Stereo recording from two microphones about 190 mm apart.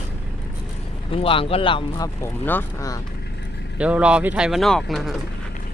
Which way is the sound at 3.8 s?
5° right (ahead or behind).